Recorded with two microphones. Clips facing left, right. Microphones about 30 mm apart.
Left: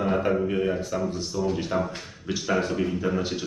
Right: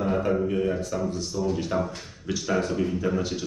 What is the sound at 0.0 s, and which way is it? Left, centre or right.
Speech, left.